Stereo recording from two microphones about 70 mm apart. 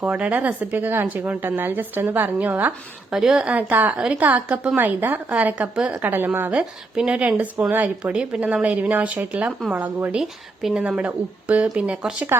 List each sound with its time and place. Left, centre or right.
0.0 s a woman's voice: right
3.1 s speech: centre
3.7 s a woman's voice: right
6.0 s a woman's voice: right
6.5 s a woman's voice: centre
8.1 s a woman's voice: centre
10.2 s speech: centre
11.0 s a woman's voice: centre